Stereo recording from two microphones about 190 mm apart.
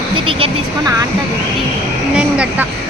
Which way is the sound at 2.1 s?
5° right (ahead or behind).